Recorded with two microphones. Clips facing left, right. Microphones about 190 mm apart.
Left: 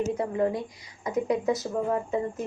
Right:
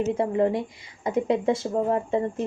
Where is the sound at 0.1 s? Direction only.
25° right (ahead or behind).